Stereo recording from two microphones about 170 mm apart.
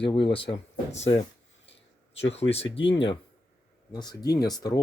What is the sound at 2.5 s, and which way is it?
Speech, 35° left (ahead or behind).